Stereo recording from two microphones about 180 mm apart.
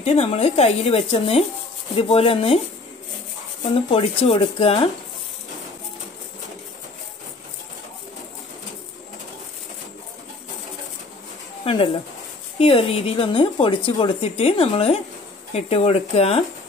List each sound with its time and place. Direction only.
0.0 s speech: 35° left (ahead or behind)
3.7 s speech: 30° left (ahead or behind)
11.6 s speech: 30° left (ahead or behind)